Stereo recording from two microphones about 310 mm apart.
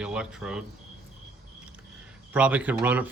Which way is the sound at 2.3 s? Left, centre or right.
Centre.